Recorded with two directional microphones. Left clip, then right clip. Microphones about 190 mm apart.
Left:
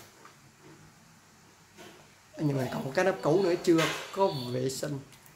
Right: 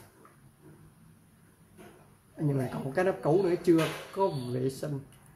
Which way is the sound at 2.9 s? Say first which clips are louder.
Left 1 dB; 5° left (ahead or behind).